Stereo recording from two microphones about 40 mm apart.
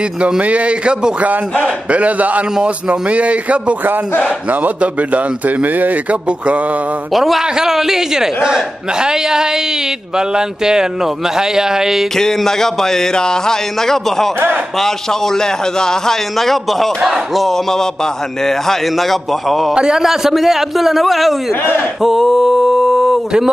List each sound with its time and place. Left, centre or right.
0.4 s a man's voice: right
7.2 s a man's voice: centre
12.2 s a man's voice: centre
19.7 s a man's voice: centre
20.0 s a man's voice: centre
22.0 s mantra: centre